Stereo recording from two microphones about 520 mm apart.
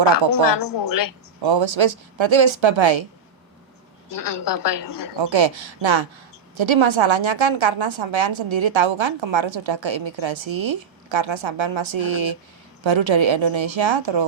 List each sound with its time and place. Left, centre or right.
0.1 s a woman's voice: left
1.4 s a woman's voice: right
4.1 s a woman's voice: left
5.1 s a woman's voice: right